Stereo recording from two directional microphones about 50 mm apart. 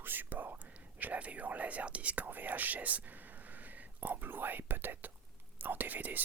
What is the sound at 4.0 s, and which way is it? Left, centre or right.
Speech, right.